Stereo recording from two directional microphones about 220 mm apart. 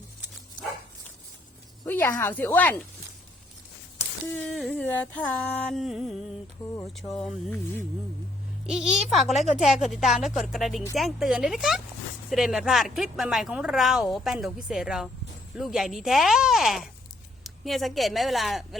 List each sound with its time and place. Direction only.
1.8 s speech: 10° left (ahead or behind)
4.4 s music: 5° left (ahead or behind)
6.8 s speech: centre (ahead or behind)
8.6 s speech: centre (ahead or behind)
9.3 s speech: 30° left (ahead or behind)
9.6 s a woman's voice: centre (ahead or behind)